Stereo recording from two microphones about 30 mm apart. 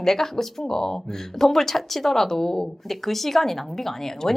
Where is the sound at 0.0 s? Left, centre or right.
Centre.